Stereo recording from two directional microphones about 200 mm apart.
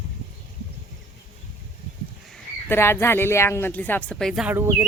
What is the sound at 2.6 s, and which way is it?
Speech, 10° left (ahead or behind).